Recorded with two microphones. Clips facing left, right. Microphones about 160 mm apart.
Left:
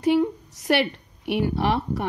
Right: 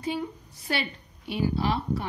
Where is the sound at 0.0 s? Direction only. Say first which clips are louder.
Left 11 dB; 70° left (ahead or behind).